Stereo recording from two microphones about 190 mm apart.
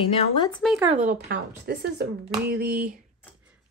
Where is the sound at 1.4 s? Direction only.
60° right (ahead or behind).